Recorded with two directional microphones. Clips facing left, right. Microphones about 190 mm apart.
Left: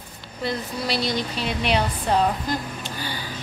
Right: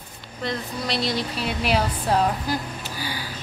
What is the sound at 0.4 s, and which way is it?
Speech, 5° left (ahead or behind).